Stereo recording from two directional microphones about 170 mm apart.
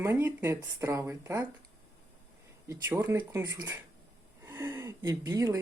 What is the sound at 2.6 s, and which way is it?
Speech, 15° right (ahead or behind).